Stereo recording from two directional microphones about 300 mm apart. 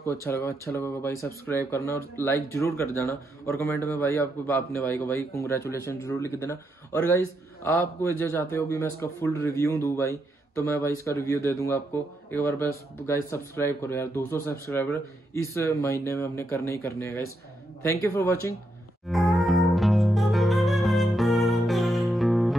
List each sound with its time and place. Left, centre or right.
0.0 s speech: centre
19.0 s music: centre